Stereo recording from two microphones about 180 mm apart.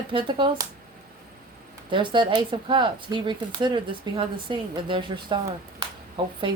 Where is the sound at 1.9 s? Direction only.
25° right (ahead or behind).